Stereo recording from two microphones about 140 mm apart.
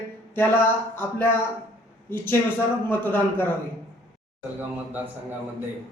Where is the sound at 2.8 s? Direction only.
15° left (ahead or behind).